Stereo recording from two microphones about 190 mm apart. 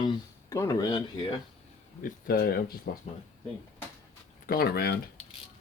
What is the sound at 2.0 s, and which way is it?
Speech, 55° left (ahead or behind).